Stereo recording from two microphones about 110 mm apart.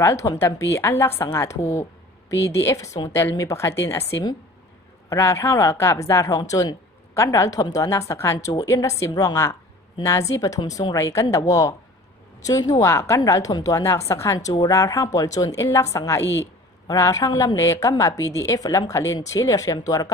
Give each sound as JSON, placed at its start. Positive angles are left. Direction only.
{"t": 0.0, "sound": "a woman's voice", "side_deg": 30}